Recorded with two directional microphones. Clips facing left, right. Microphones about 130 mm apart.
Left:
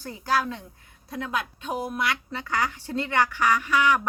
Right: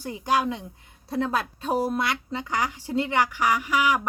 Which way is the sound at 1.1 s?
35° right (ahead or behind).